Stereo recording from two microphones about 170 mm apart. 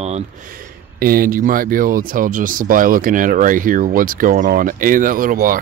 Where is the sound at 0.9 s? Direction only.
60° right (ahead or behind).